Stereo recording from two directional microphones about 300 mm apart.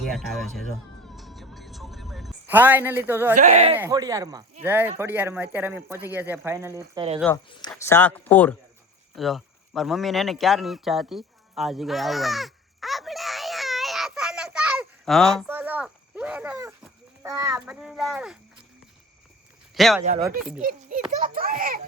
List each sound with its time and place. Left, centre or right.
0.0 s a child's voice: centre
1.0 s music: centre
3.3 s a child's voice: right
7.7 s a child's voice: centre
9.1 s a sound: centre
17.2 s a child's voice: centre
19.7 s a child's voice: centre
21.1 s a child's voice: right